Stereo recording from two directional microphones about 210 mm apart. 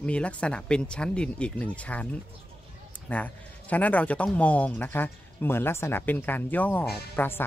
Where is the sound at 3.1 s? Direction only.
5° left (ahead or behind).